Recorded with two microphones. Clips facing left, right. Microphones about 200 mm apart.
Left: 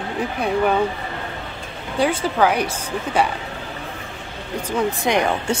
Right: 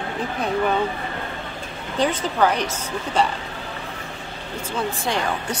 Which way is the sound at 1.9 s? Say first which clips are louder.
Left 2 dB; 10° left (ahead or behind).